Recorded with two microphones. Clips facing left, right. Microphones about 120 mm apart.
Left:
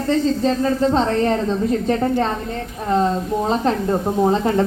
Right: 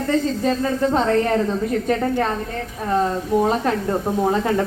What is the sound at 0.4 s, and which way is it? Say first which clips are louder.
A woman's voice: left 2 dB; 20° left (ahead or behind).